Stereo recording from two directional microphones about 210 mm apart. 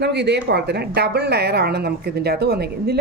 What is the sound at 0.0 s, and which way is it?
A woman's voice, 55° right (ahead or behind).